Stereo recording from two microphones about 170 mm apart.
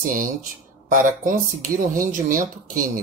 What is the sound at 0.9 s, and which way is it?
Speech, 50° right (ahead or behind).